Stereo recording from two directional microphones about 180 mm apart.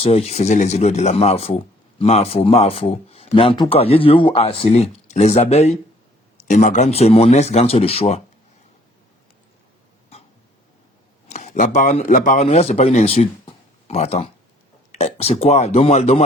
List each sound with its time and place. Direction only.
0.0 s speech: 35° left (ahead or behind)
11.3 s speech: 40° left (ahead or behind)